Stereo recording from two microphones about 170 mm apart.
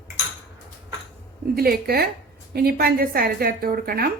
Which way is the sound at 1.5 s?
65° right (ahead or behind).